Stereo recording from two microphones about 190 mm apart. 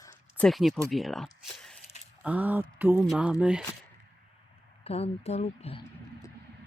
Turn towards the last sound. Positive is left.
turn(degrees=35)  # may be behind; listen again after turning